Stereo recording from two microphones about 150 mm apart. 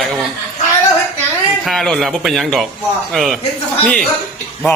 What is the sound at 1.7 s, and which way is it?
Speech, centre (ahead or behind).